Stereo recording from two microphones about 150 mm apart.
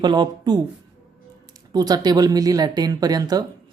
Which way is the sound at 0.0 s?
30° right (ahead or behind).